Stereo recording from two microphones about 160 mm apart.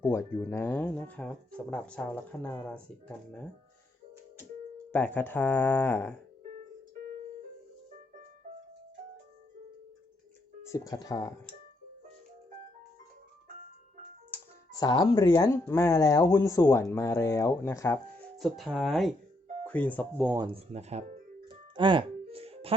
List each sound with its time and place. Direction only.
0.0 s speech: 15° left (ahead or behind)
4.9 s speech: 10° left (ahead or behind)
8.4 s music: 55° right (ahead or behind)
10.7 s speech: 20° left (ahead or behind)
14.7 s speech: 25° left (ahead or behind)
18.3 s speech: centre (ahead or behind)
20.5 s speech: 40° right (ahead or behind)
21.4 s music: 30° right (ahead or behind)